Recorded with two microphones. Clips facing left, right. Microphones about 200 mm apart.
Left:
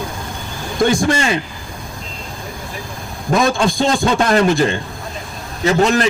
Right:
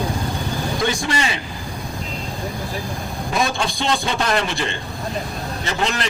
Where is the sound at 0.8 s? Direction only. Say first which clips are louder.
Left 9 dB; 50° left (ahead or behind).